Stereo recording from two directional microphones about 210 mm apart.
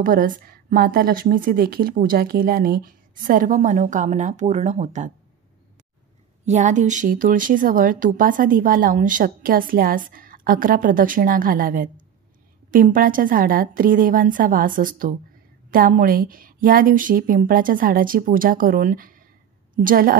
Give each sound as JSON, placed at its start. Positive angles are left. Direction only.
{"t": 0.0, "sound": "speech", "side_deg": -40}
{"t": 6.4, "sound": "a woman's voice", "side_deg": -35}